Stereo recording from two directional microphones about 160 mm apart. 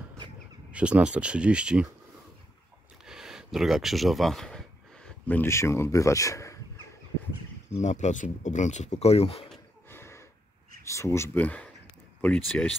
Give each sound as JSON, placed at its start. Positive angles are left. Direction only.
{"t": 0.7, "sound": "speech", "side_deg": -10}
{"t": 3.1, "sound": "speech", "side_deg": -5}
{"t": 7.8, "sound": "speech", "side_deg": 50}
{"t": 9.8, "sound": "a sound", "side_deg": 15}
{"t": 10.8, "sound": "speech", "side_deg": 20}